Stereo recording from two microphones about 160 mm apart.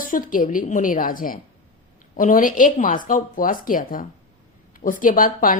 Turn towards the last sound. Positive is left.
turn(degrees=60)  # may be behind; listen again after turning